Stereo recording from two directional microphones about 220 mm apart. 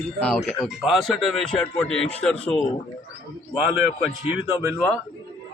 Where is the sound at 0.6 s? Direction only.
Centre (ahead or behind).